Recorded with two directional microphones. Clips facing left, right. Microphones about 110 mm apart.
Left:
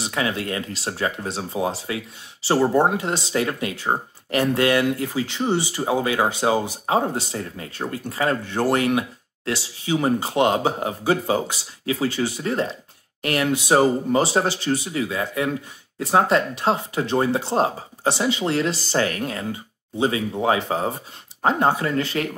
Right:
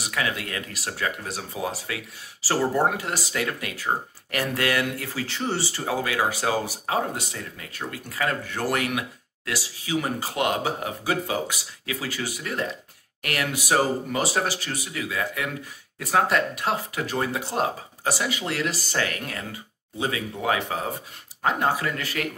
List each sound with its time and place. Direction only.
0.0 s speech: 25° left (ahead or behind)